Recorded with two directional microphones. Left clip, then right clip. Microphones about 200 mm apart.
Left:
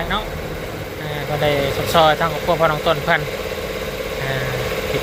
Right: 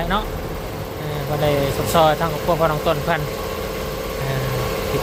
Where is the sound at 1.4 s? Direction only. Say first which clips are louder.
Left 1 dB; 10° right (ahead or behind).